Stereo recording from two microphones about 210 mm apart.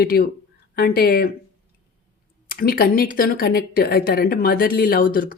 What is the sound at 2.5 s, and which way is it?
Speech, 45° left (ahead or behind).